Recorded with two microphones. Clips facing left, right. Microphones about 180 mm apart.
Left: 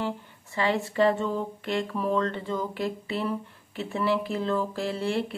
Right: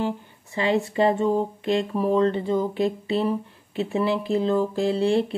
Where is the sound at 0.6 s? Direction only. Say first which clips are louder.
Right 3 dB; 20° right (ahead or behind).